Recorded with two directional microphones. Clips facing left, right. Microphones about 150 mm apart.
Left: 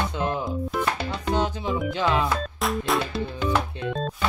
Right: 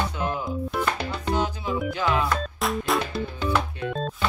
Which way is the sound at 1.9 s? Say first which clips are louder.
Left 1 dB; 20° left (ahead or behind).